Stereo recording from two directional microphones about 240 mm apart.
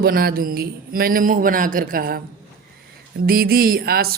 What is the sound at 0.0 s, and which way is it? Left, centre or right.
Speech, right.